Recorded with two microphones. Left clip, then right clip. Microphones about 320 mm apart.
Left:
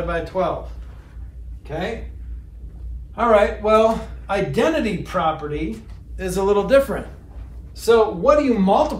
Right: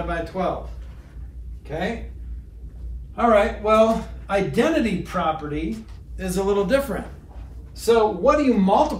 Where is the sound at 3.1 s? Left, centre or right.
Centre.